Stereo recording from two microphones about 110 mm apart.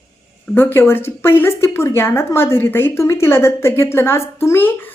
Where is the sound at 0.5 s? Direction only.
20° left (ahead or behind).